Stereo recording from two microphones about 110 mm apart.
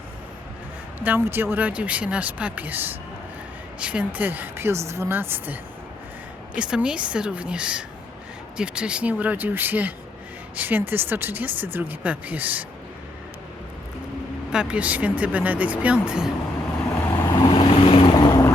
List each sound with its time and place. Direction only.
0.9 s a woman's voice: 15° right (ahead or behind)
6.6 s speech: 10° right (ahead or behind)
14.5 s speech: 10° right (ahead or behind)
17.2 s vehicle: 35° left (ahead or behind)
17.5 s vehicle: 55° left (ahead or behind)
18.1 s boat: 35° left (ahead or behind)